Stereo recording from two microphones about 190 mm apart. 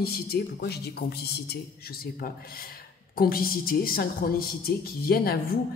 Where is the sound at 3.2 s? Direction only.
50° left (ahead or behind).